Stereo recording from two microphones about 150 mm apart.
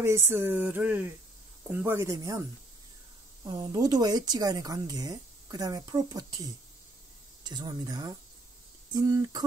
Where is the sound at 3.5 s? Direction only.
25° right (ahead or behind).